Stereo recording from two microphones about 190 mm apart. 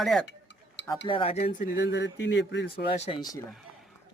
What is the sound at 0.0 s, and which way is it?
Speech, centre (ahead or behind).